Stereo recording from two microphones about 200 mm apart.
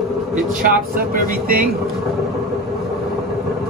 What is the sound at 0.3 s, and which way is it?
A man's voice, 40° right (ahead or behind).